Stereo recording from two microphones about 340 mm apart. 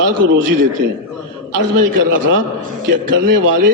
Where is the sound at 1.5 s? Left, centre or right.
Right.